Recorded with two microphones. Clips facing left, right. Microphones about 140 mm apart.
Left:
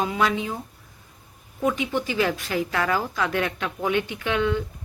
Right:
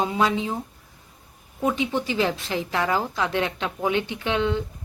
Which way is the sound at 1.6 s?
25° right (ahead or behind).